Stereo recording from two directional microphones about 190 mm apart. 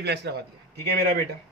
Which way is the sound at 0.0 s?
60° right (ahead or behind).